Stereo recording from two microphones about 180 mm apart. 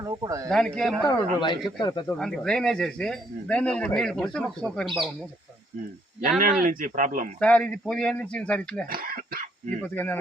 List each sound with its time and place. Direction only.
0.0 s speech: 20° right (ahead or behind)
0.5 s speech: centre (ahead or behind)
1.0 s speech: 25° left (ahead or behind)
2.0 s speech: 5° left (ahead or behind)
6.4 s speech: 50° right (ahead or behind)
7.3 s speech: 5° left (ahead or behind)
8.9 s speech: 55° right (ahead or behind)
9.8 s speech: 10° left (ahead or behind)